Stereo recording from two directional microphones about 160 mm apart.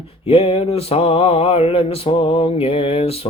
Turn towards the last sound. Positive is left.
turn(degrees=40)  # may be behind; listen again after turning